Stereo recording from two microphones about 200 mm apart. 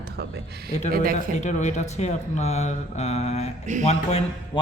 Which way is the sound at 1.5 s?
35° left (ahead or behind).